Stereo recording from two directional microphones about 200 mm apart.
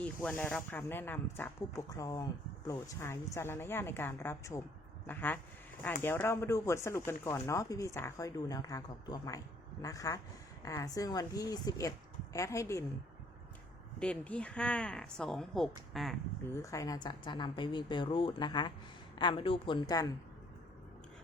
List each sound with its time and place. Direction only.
0.0 s speech: 5° left (ahead or behind)
14.0 s speech: 5° left (ahead or behind)
16.6 s a woman's voice: 15° left (ahead or behind)